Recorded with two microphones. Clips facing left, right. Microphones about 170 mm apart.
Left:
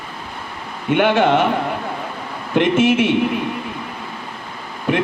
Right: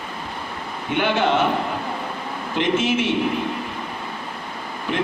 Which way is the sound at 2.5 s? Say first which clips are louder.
Left 6 dB; 60° left (ahead or behind).